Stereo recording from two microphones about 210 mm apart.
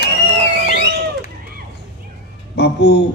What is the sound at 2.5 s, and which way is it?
Speech, 50° left (ahead or behind).